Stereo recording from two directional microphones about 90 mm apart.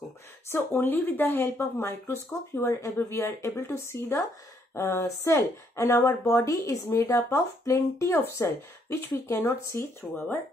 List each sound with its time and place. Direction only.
0.5 s speech: 20° left (ahead or behind)